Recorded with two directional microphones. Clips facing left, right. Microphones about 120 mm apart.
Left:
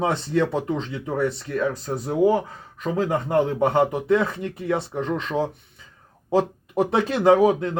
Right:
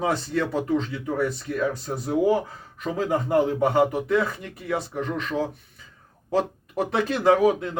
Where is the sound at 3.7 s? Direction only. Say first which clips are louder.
Left 2 dB; 30° left (ahead or behind).